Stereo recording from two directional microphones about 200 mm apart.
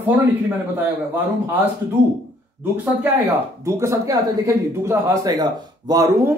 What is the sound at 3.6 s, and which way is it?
Speech, 15° right (ahead or behind).